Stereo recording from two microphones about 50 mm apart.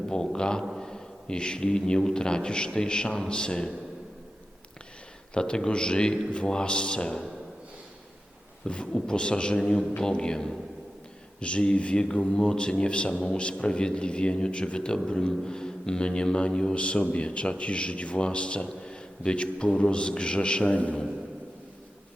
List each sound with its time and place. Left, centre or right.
0.1 s a man's voice: centre
5.3 s a man's voice: centre
8.6 s a man's voice: centre